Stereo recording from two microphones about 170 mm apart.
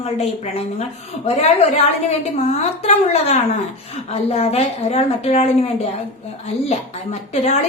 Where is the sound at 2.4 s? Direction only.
40° left (ahead or behind).